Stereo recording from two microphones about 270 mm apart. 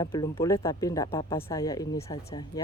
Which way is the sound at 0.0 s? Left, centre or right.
Centre.